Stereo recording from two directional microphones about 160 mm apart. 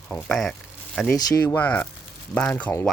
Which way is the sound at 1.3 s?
15° left (ahead or behind).